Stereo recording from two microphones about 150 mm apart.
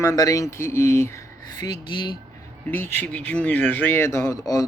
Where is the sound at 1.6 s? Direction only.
30° left (ahead or behind).